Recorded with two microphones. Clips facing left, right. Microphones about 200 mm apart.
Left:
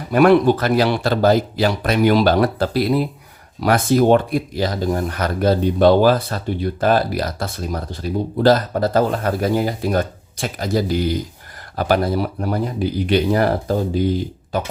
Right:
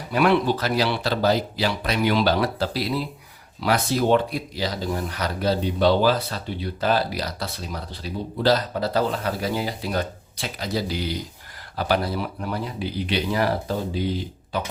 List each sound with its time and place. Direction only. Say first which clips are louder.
0.1 s speech: left 7 dB; 50° left (ahead or behind)